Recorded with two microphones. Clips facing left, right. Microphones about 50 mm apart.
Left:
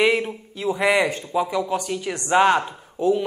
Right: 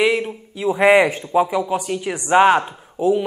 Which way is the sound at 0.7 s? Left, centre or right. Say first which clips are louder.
Right 7 dB; right.